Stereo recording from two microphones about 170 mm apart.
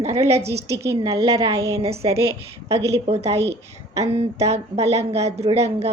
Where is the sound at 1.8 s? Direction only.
35° right (ahead or behind).